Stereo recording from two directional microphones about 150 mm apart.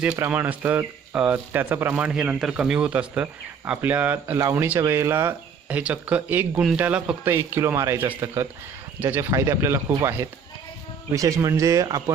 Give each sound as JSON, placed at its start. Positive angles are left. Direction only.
{"t": 0.2, "sound": "speech", "side_deg": -10}